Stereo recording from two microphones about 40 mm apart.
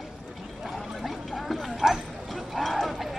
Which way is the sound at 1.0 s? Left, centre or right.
Centre.